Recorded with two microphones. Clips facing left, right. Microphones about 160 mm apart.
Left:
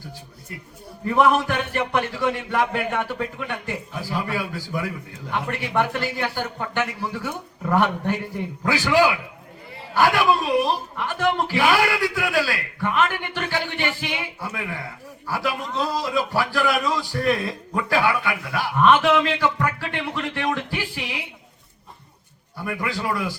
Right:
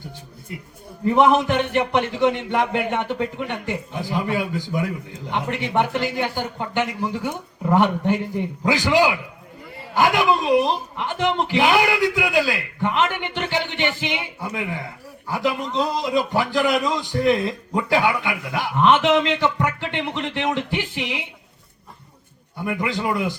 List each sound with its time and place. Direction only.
1.0 s a man's voice: 20° right (ahead or behind)
10.6 s a man's voice: 20° right (ahead or behind)
22.5 s a man's voice: 20° right (ahead or behind)